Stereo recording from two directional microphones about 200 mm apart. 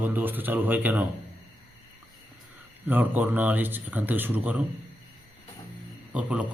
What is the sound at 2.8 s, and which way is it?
A man's voice, 10° right (ahead or behind).